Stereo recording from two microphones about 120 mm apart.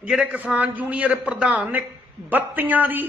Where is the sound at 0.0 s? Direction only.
10° right (ahead or behind).